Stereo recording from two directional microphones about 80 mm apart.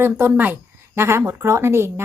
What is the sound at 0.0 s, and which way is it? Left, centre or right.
A woman's voice, right.